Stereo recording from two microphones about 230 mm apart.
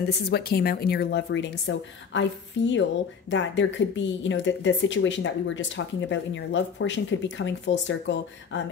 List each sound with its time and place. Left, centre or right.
0.3 s speech: left